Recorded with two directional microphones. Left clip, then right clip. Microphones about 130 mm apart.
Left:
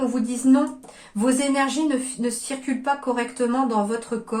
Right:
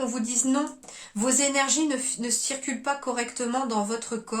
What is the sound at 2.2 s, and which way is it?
Speech, 25° right (ahead or behind).